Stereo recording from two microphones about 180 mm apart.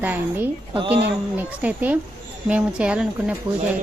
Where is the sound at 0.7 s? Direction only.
30° right (ahead or behind).